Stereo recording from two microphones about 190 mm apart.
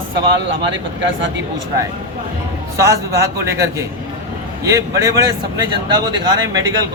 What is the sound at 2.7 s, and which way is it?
A man's voice, 15° right (ahead or behind).